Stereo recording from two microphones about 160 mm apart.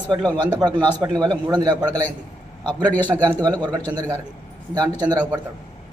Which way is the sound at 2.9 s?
10° left (ahead or behind).